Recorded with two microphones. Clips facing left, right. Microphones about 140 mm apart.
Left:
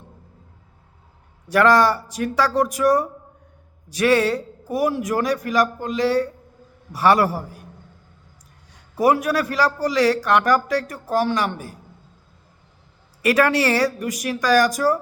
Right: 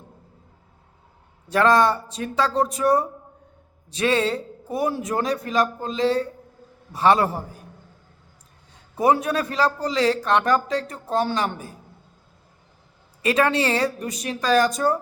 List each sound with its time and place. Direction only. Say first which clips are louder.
1.5 s a man's voice: left 2 dB; 25° right (ahead or behind)
8.7 s a man's voice: left 1 dB; 25° right (ahead or behind)
13.2 s a man's voice: left 2 dB; 25° right (ahead or behind)